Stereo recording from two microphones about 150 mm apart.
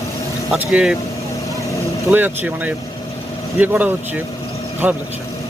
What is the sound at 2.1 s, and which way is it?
Speech, 10° right (ahead or behind).